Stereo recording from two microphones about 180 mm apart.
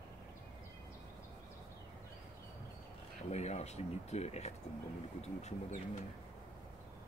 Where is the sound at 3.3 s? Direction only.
40° left (ahead or behind).